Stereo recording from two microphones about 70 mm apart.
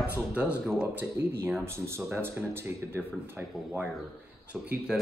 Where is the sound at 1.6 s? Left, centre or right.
Right.